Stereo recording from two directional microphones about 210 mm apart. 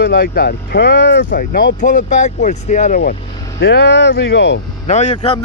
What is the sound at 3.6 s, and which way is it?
Speech, 55° left (ahead or behind).